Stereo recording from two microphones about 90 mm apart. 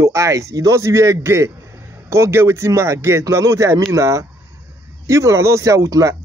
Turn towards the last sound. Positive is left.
turn(degrees=-35)  # may be behind; listen again after turning